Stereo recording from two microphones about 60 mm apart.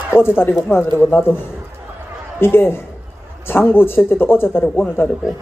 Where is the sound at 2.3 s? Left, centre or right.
Left.